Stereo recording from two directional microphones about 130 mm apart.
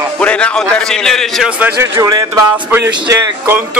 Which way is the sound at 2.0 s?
25° right (ahead or behind).